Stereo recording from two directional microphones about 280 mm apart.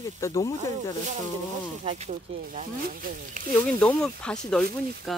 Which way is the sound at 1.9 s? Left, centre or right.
Right.